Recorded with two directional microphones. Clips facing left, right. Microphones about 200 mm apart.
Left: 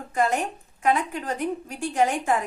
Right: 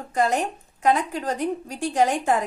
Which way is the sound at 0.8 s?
35° right (ahead or behind).